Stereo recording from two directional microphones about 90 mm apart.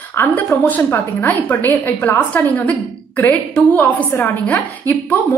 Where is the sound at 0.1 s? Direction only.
25° left (ahead or behind).